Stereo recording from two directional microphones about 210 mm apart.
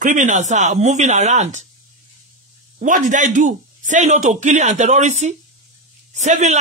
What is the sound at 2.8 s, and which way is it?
A man's voice, 35° right (ahead or behind).